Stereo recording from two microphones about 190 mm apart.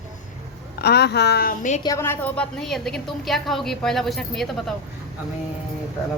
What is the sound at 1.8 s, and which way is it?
A woman's voice, 15° left (ahead or behind).